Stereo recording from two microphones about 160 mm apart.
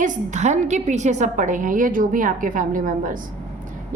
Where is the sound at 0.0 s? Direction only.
50° right (ahead or behind).